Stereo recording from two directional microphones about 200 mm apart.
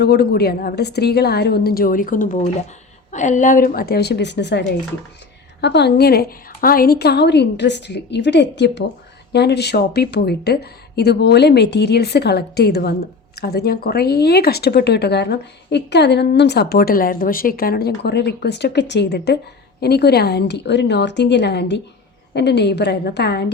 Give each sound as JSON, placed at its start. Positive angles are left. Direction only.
{"t": 0.0, "sound": "a woman's voice", "side_deg": 55}